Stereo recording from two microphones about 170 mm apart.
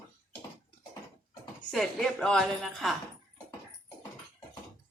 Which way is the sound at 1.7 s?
Centre (ahead or behind).